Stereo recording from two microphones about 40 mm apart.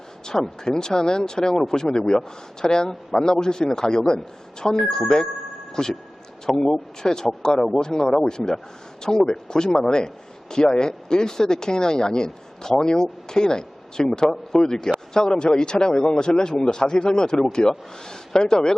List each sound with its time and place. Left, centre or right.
0.6 s a man's voice: centre